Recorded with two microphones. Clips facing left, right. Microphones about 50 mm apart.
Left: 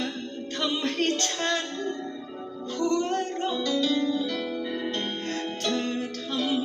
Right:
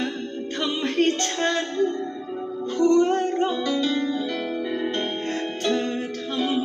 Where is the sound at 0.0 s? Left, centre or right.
Centre.